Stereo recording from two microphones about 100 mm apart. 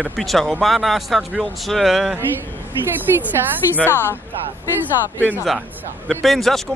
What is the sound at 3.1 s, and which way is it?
Speech, 25° right (ahead or behind).